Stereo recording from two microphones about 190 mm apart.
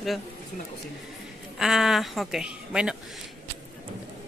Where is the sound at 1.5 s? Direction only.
Centre (ahead or behind).